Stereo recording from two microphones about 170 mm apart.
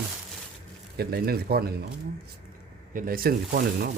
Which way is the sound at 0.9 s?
65° right (ahead or behind).